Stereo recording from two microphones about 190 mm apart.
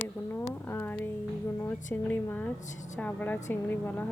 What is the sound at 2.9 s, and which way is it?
A woman's voice, 10° left (ahead or behind).